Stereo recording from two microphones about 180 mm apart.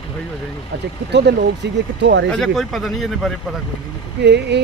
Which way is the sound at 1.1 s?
70° right (ahead or behind).